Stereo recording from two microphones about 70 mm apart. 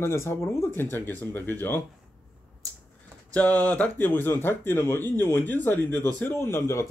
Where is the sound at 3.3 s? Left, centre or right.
Left.